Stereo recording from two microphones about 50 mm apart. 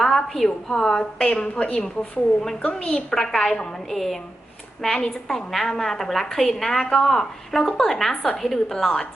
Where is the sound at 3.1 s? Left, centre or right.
Centre.